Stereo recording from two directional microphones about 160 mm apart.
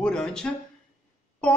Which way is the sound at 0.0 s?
5° left (ahead or behind).